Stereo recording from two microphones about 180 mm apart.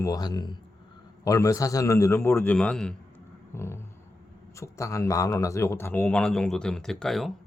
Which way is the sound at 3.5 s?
15° left (ahead or behind).